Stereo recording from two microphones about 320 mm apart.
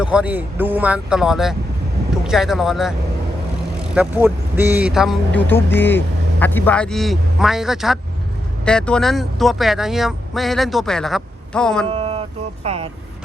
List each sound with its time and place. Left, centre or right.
0.0 s speech: centre
11.9 s boat: centre
12.6 s speech: centre